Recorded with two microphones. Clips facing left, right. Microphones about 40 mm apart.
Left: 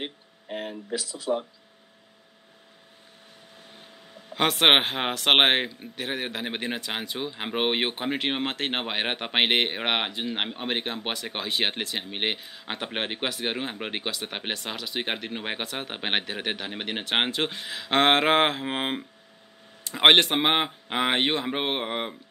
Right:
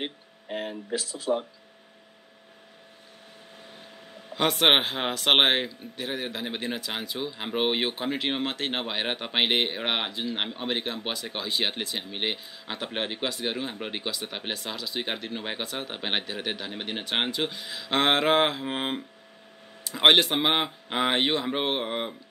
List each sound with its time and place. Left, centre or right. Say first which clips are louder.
0.0 s a sound: right 1 dB; centre
0.9 s speech: right 1 dB; right
4.4 s speech: left 2 dB; left
12.4 s speech: left 2 dB; left
12.8 s speech: even; left
17.9 s speech: left 2 dB; left
19.9 s speech: left 1 dB; left
20.3 s speech: left 1 dB; left